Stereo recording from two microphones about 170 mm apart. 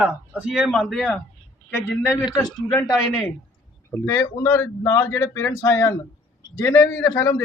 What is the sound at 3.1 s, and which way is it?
A woman's voice, 5° left (ahead or behind).